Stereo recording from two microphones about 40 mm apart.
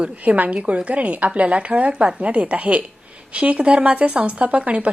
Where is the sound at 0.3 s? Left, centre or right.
Right.